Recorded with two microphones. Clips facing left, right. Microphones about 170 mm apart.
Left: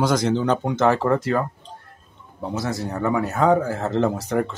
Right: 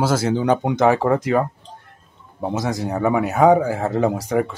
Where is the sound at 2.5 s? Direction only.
15° right (ahead or behind).